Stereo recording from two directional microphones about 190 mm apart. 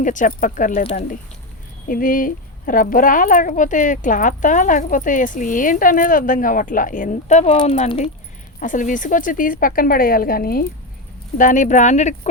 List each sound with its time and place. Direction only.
0.0 s speech: 40° left (ahead or behind)
1.9 s speech: 45° left (ahead or behind)
7.5 s speech: 25° left (ahead or behind)
7.8 s speech: 35° left (ahead or behind); by 10.7 s 50° left (ahead or behind)
11.3 s speech: 40° left (ahead or behind)